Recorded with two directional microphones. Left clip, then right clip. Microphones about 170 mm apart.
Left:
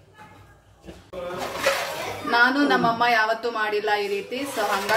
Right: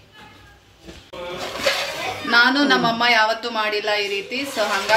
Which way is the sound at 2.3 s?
10° right (ahead or behind).